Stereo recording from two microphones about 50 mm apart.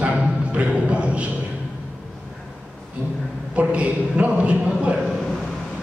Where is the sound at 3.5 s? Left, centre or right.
Right.